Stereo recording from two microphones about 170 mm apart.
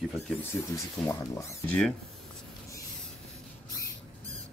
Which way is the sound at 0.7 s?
20° left (ahead or behind).